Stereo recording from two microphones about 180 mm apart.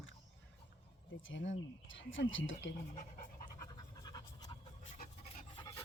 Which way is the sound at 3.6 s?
20° left (ahead or behind).